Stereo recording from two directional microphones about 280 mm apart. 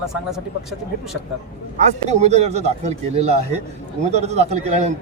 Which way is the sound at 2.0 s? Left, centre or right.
Right.